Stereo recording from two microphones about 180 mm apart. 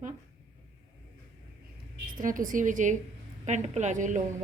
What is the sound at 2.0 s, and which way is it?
A woman's voice, 50° right (ahead or behind).